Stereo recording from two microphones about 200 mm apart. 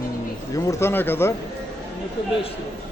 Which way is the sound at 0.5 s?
15° left (ahead or behind).